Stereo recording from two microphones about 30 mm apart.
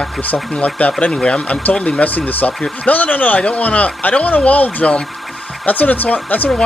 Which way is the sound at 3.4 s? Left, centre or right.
Left.